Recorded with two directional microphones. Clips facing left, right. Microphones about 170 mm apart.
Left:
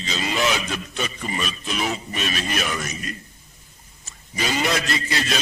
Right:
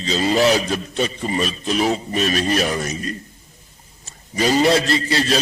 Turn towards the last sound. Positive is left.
turn(degrees=-35)  # may be behind; listen again after turning